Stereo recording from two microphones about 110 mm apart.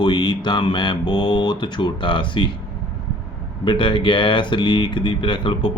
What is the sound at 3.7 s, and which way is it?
Speech, 45° left (ahead or behind).